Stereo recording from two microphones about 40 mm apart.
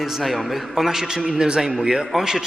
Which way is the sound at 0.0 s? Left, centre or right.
Centre.